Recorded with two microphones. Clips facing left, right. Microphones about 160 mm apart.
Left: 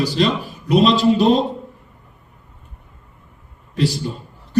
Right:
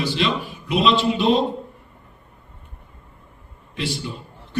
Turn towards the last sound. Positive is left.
turn(degrees=40)  # may be behind; listen again after turning